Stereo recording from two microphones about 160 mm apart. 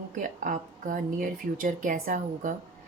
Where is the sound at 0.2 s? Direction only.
55° right (ahead or behind).